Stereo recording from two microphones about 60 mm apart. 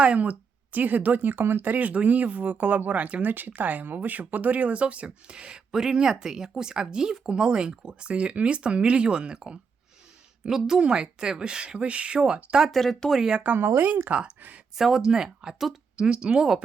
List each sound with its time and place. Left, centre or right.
0.0 s a woman's voice: right
12.6 s speech: centre
13.3 s speech: right
13.6 s speech: right
13.8 s speech: right
14.8 s a woman's voice: centre